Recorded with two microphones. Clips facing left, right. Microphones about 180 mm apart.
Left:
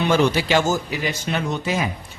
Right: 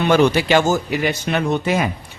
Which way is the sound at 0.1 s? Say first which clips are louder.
Right 5 dB; 60° right (ahead or behind).